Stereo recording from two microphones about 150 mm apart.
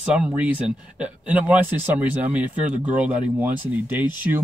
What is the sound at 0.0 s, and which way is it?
Speech, 5° right (ahead or behind).